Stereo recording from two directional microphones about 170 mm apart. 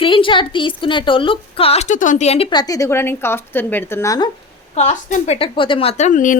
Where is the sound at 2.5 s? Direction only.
20° left (ahead or behind).